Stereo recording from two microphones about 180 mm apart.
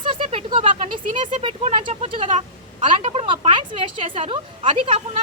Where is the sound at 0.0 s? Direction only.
30° right (ahead or behind).